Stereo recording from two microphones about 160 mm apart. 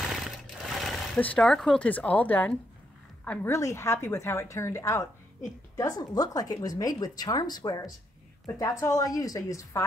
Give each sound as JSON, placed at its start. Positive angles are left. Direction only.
{"t": 0.0, "sound": "sewing machine", "side_deg": 0}
{"t": 3.3, "sound": "a woman's voice", "side_deg": 15}